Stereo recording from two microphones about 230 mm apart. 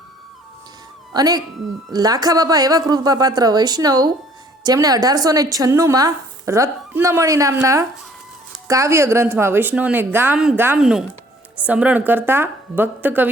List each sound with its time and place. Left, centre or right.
1.1 s speech: centre